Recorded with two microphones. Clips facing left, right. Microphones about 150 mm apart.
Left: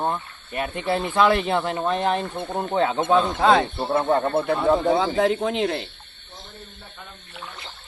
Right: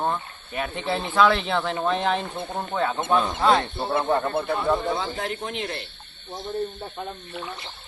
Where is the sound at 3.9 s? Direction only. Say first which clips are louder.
Left 3 dB; 35° left (ahead or behind).